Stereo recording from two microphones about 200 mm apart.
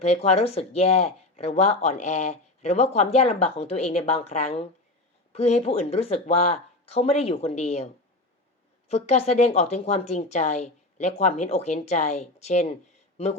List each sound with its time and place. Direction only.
0.0 s speech: 30° left (ahead or behind)
8.9 s speech: 30° left (ahead or behind)